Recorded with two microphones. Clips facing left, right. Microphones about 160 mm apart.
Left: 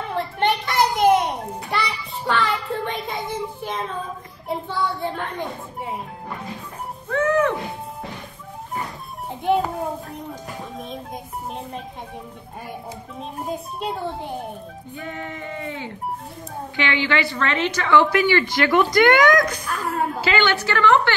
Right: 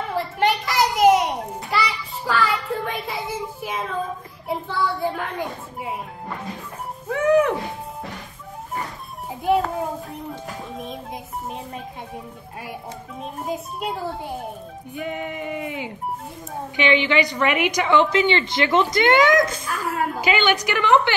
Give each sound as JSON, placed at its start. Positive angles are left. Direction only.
{"t": 0.1, "sound": "children playing", "side_deg": -5}
{"t": 5.0, "sound": "a child's voice", "side_deg": -5}
{"t": 7.1, "sound": "music", "side_deg": -15}
{"t": 9.3, "sound": "a child's voice", "side_deg": 0}
{"t": 13.2, "sound": "a child's voice", "side_deg": -5}
{"t": 15.0, "sound": "a woman's voice", "side_deg": -15}
{"t": 19.6, "sound": "a child's voice", "side_deg": 0}
{"t": 20.2, "sound": "a woman's voice", "side_deg": -15}